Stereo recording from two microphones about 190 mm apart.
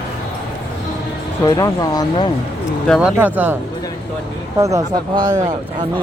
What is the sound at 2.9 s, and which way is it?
Speech, 5° right (ahead or behind).